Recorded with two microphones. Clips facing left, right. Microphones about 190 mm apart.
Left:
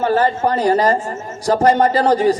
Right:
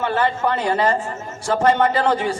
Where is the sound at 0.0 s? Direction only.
35° left (ahead or behind).